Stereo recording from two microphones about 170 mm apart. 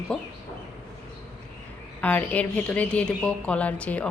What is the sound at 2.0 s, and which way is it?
A woman's voice, 10° left (ahead or behind).